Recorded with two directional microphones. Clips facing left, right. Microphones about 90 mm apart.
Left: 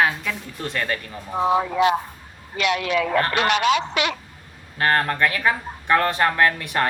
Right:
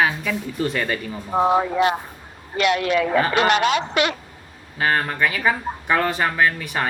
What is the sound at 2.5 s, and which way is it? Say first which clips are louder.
Speech: right 3 dB; 40° right (ahead or behind).